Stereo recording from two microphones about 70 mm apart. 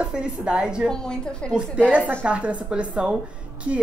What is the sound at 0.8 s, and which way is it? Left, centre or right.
Speech, centre.